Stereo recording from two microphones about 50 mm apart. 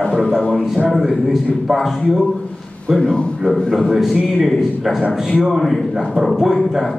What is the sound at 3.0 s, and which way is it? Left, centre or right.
Speech, centre.